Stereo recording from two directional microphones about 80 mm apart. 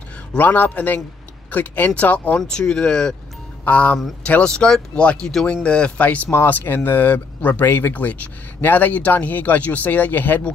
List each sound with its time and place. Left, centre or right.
0.4 s speech: left